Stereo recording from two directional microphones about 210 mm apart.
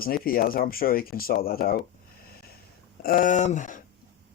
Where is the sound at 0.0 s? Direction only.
45° left (ahead or behind).